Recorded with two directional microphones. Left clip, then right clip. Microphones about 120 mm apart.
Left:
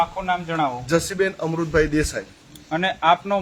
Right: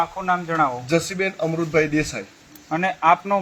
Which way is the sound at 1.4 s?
30° left (ahead or behind).